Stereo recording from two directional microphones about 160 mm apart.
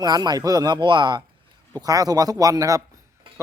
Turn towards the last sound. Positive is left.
turn(degrees=-20)  # may be behind; listen again after turning